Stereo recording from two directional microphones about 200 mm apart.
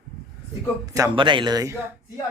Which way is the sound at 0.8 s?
15° right (ahead or behind).